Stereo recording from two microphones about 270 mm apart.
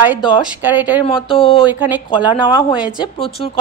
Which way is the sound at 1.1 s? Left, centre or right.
Centre.